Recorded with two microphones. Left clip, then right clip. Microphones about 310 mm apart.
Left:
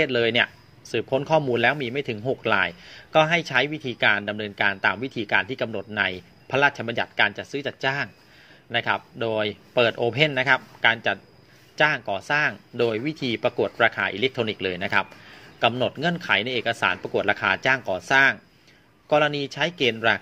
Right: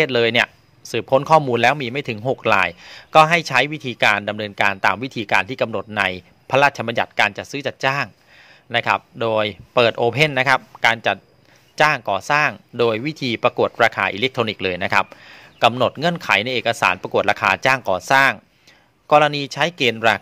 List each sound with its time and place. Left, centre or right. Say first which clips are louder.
0.0 s speech: right 4 dB; right